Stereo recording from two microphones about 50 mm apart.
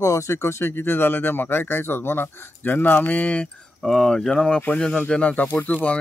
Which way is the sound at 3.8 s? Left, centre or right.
Centre.